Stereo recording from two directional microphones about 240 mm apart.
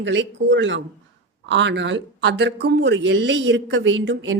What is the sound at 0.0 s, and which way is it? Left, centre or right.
Speech, right.